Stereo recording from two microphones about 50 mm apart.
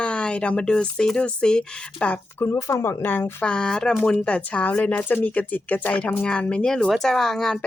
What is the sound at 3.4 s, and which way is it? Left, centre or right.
Speech, centre.